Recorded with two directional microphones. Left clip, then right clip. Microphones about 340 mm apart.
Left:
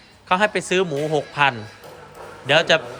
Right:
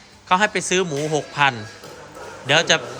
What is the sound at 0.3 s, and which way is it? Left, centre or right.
A man's voice, centre.